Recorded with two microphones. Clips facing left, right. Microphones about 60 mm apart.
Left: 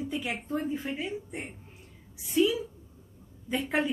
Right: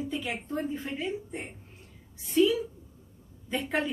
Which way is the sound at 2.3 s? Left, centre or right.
Centre.